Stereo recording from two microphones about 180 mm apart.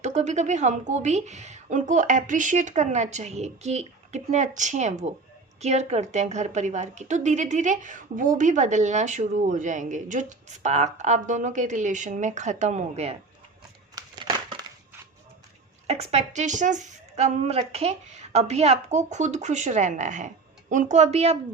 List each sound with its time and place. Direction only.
0.0 s a woman's voice: 40° right (ahead or behind)
13.9 s crumpling: 25° right (ahead or behind)
15.9 s a woman's voice: 35° right (ahead or behind)